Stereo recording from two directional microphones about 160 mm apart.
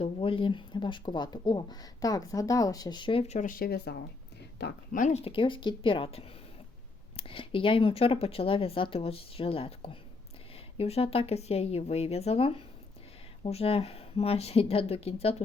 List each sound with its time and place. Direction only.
0.0 s speech: 35° left (ahead or behind); by 3.9 s 75° left (ahead or behind)
4.5 s speech: 90° left
4.9 s speech: 45° left (ahead or behind)